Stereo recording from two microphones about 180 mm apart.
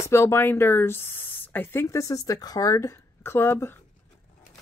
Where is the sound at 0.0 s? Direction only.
15° left (ahead or behind).